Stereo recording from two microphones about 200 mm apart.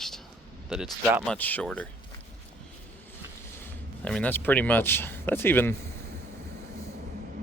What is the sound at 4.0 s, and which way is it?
Speech, 5° left (ahead or behind).